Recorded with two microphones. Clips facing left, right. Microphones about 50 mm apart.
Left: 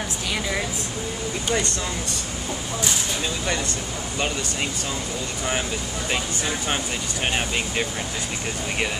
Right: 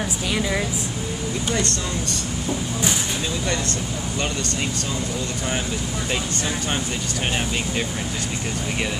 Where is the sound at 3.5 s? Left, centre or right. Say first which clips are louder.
Right 1 dB; centre.